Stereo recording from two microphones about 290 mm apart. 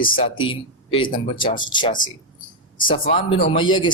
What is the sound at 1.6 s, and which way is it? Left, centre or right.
A man's voice, centre.